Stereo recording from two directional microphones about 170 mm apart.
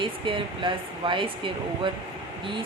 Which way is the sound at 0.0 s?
30° right (ahead or behind).